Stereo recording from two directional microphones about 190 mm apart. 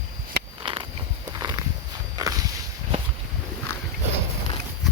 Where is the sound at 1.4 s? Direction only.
20° right (ahead or behind).